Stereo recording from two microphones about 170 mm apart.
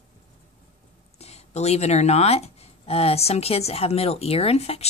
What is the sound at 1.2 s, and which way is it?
Speech, 40° left (ahead or behind).